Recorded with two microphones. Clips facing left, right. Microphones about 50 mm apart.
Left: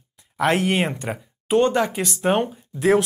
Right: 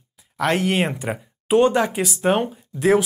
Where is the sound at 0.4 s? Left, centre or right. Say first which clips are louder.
Even; centre.